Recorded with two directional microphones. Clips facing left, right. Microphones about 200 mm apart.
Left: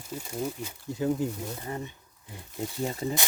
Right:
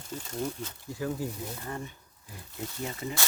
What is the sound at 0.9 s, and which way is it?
Speech, 20° left (ahead or behind).